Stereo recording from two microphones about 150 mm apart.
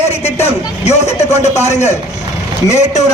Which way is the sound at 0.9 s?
45° left (ahead or behind).